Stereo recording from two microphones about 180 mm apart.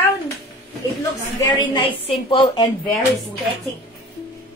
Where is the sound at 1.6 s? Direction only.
25° left (ahead or behind).